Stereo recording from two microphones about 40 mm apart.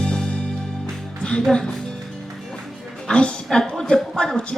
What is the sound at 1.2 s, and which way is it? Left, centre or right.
Music, left.